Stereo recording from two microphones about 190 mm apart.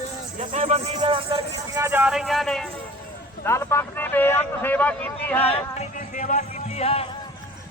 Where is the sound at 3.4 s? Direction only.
15° left (ahead or behind).